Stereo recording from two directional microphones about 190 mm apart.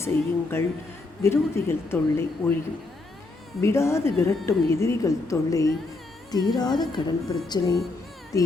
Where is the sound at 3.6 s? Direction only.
15° left (ahead or behind).